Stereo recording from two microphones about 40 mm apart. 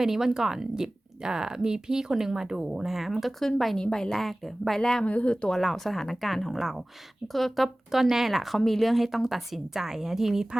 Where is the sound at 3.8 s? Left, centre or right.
Centre.